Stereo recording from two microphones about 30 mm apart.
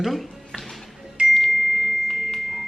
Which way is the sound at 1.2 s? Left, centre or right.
Right.